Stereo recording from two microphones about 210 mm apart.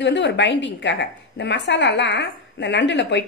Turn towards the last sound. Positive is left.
turn(degrees=55)  # may be behind; listen again after turning